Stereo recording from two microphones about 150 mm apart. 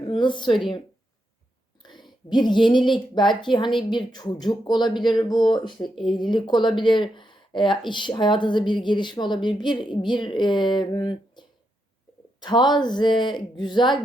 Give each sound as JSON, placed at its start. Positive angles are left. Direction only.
{"t": 0.1, "sound": "a woman's voice", "side_deg": 30}
{"t": 1.8, "sound": "a woman's voice", "side_deg": 30}